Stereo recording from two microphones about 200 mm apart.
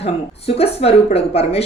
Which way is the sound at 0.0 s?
30° left (ahead or behind).